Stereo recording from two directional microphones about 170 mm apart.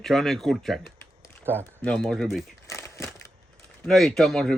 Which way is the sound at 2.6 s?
15° left (ahead or behind).